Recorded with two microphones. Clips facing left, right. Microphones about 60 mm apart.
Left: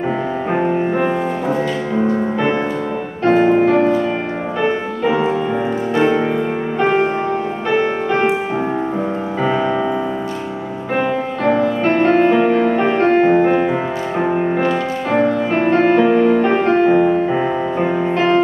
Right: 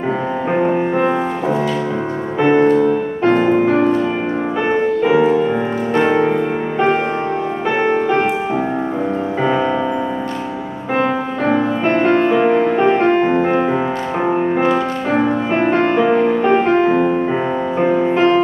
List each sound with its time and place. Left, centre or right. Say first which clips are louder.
0.7 s music: right 1 dB; centre
3.3 s music: left 2 dB; centre
6.0 s music: right 2 dB; centre
6.8 s music: left 1 dB; centre
11.4 s music: left 1 dB; centre
11.9 s music: left 1 dB; centre